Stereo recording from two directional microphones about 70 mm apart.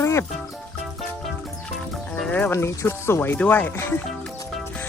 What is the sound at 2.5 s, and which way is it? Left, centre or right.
Speech, left.